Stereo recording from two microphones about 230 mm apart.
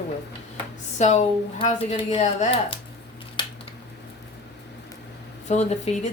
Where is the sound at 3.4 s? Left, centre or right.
Centre.